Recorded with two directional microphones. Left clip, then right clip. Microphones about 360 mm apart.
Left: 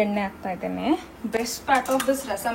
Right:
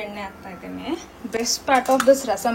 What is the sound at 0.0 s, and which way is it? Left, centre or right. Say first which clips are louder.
Speech: left 7 dB; centre.